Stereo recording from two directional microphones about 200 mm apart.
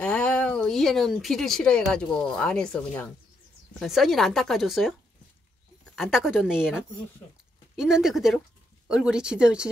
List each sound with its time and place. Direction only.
0.0 s a woman's voice: 5° left (ahead or behind)
5.9 s speech: centre (ahead or behind)